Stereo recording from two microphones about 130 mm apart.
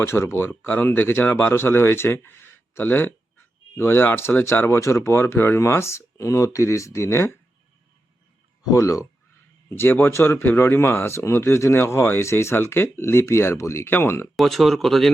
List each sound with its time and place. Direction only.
0.0 s speech: 20° left (ahead or behind)
8.7 s speech: 25° left (ahead or behind)
14.3 s speech: centre (ahead or behind)